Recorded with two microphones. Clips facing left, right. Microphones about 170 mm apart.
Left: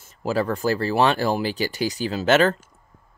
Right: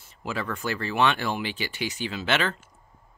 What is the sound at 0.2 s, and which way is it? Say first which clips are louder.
Speech: left 8 dB; 40° left (ahead or behind).